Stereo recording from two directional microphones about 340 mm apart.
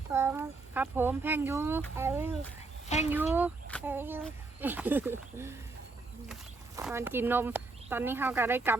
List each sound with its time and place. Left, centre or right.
0.1 s speech: centre
6.7 s speech: centre